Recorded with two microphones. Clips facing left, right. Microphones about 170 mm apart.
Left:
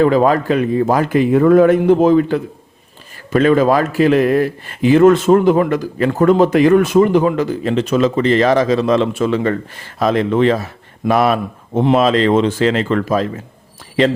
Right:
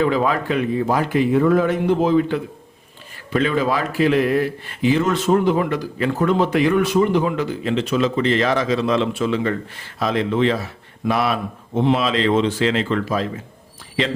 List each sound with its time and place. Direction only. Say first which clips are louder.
0.0 s a man's voice: left 6 dB; 45° left (ahead or behind)